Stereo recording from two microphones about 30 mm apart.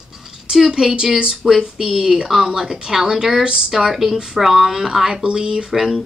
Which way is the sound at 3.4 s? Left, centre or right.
Right.